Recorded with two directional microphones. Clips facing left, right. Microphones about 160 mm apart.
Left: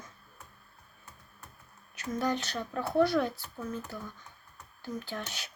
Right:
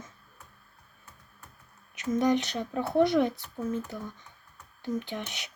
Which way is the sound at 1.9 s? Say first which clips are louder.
Right 6 dB; 20° right (ahead or behind).